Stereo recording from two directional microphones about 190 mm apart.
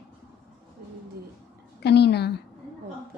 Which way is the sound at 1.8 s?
60° left (ahead or behind).